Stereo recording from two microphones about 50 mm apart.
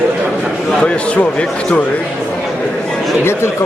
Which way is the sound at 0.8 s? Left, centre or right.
Left.